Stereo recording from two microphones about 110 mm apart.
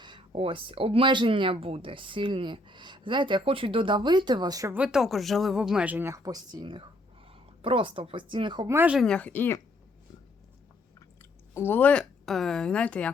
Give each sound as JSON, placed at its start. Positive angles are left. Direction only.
{"t": 0.0, "sound": "a sound", "side_deg": -45}
{"t": 0.3, "sound": "speech", "side_deg": -55}
{"t": 4.7, "sound": "speech", "side_deg": -10}
{"t": 8.6, "sound": "speech", "side_deg": -25}
{"t": 9.0, "sound": "speech", "side_deg": 10}
{"t": 11.2, "sound": "speech", "side_deg": 20}